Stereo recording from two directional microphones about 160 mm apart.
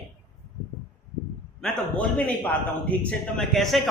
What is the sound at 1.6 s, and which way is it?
A man's voice, 10° left (ahead or behind).